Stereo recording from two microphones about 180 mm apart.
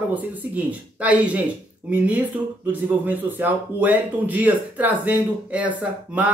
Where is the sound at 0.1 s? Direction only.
10° right (ahead or behind).